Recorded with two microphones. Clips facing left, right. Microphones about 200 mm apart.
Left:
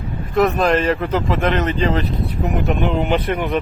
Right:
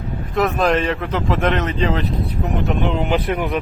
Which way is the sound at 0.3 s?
Centre (ahead or behind).